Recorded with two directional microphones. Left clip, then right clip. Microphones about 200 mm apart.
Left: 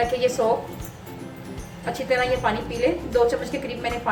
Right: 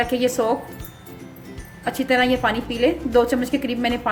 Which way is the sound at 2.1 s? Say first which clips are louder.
Right 3 dB; 50° right (ahead or behind).